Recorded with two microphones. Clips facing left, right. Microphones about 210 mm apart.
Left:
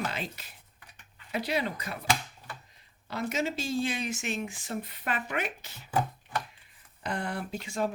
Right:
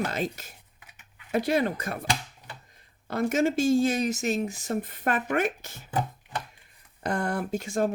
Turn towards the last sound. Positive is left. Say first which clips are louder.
# right 5 dB
turn(degrees=-45)  # may be behind; listen again after turning